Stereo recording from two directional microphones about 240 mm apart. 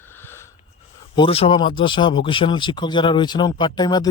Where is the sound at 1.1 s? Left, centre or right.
Left.